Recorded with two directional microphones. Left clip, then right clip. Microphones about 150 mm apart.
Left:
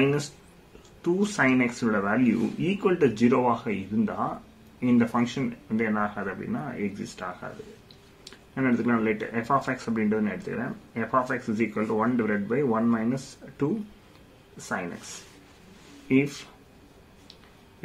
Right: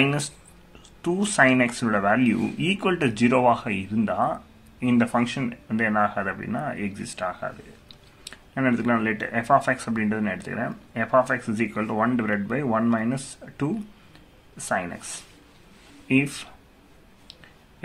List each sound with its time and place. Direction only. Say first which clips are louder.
0.0 s speech: right 1 dB; 25° right (ahead or behind)